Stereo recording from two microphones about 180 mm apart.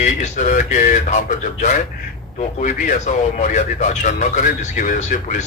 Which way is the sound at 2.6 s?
45° left (ahead or behind).